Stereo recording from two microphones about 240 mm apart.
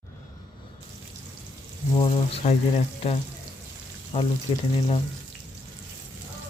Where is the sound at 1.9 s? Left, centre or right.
Left.